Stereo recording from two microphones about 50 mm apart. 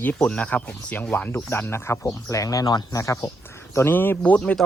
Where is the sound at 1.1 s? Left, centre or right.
Left.